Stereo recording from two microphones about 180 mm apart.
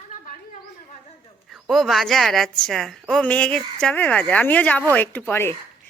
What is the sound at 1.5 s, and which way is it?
A woman's voice, centre (ahead or behind).